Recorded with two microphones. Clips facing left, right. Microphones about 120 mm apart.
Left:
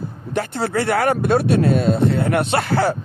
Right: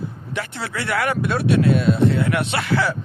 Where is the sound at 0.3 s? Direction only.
40° left (ahead or behind).